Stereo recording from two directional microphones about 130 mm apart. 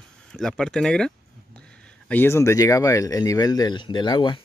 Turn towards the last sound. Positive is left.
turn(degrees=35)  # may be behind; listen again after turning